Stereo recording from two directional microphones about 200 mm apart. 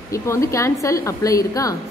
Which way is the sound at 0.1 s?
15° left (ahead or behind).